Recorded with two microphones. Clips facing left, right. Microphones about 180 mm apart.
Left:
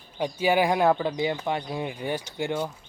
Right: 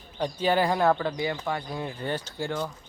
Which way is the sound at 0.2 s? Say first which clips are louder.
Left 1 dB; 10° left (ahead or behind).